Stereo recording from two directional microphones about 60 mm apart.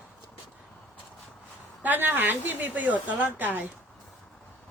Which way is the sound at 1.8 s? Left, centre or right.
Right.